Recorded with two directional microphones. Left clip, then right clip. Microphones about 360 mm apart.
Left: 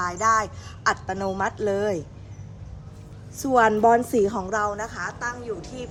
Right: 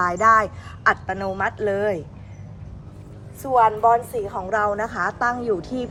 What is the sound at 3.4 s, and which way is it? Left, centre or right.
A woman's voice, left.